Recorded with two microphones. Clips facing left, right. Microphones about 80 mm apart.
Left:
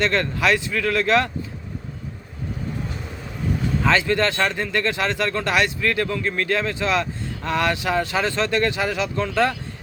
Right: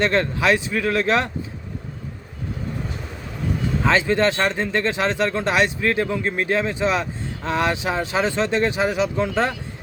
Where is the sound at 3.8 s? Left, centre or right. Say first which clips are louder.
Right 2 dB; right.